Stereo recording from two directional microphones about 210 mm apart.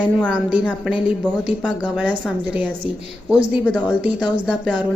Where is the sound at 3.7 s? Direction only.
5° right (ahead or behind).